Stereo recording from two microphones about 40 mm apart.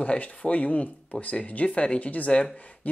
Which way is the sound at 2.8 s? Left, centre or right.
Left.